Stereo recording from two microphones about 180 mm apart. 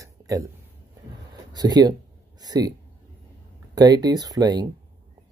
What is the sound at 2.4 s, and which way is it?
Speech, 20° right (ahead or behind).